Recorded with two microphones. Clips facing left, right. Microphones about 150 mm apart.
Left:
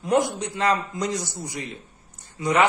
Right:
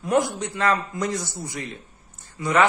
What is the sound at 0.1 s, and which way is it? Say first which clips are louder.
A man's voice: even; 20° left (ahead or behind).